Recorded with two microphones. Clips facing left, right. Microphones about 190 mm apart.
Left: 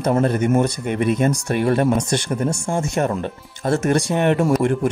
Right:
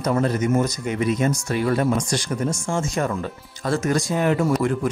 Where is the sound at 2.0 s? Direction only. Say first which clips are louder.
Left 3 dB; 25° left (ahead or behind).